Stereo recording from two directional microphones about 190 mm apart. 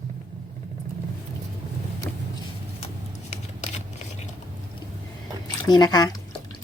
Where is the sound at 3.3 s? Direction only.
35° left (ahead or behind).